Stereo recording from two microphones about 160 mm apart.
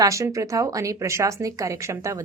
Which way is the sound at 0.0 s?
20° right (ahead or behind).